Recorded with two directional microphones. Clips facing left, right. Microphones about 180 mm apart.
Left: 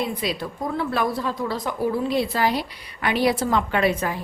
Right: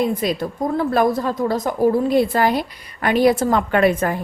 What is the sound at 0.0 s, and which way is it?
A woman's voice, 45° right (ahead or behind).